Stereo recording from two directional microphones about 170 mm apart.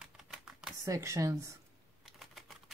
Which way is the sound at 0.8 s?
15° right (ahead or behind).